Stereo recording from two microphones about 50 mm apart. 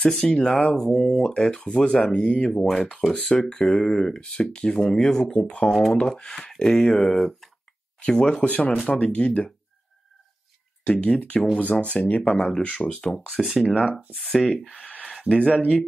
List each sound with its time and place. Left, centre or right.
0.0 s speech: centre
4.2 s speech: centre
5.7 s speech: centre
8.0 s speech: centre
8.5 s speech: left
10.9 s speech: left
12.3 s speech: centre
13.4 s speech: centre
15.2 s speech: centre